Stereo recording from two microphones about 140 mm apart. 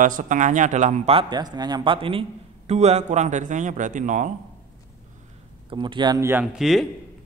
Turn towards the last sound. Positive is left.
turn(degrees=0)  # may be behind; listen again after turning